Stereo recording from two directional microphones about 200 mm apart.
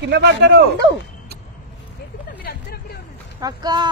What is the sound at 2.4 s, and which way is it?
Vehicle, 50° left (ahead or behind).